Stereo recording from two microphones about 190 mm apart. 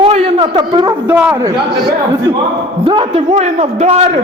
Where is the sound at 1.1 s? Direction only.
10° right (ahead or behind).